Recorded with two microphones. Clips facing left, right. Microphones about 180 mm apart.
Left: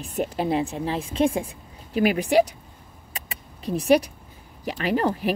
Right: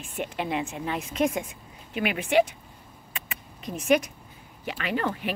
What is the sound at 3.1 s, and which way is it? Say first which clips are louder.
Vehicle: left 1 dB; 35° left (ahead or behind).